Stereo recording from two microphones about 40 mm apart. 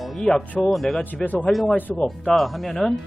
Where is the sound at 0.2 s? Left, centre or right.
Centre.